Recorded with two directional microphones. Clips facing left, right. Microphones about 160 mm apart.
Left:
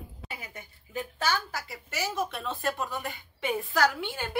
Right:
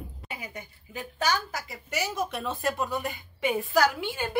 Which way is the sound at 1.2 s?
15° right (ahead or behind).